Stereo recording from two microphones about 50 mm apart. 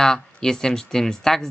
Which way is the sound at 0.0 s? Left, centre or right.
Centre.